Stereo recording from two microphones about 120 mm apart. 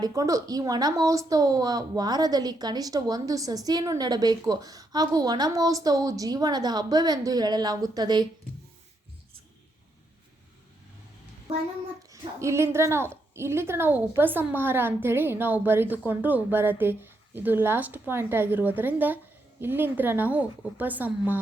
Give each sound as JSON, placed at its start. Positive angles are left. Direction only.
{"t": 0.0, "sound": "a woman's voice", "side_deg": -30}
{"t": 12.1, "sound": "a woman's voice", "side_deg": -25}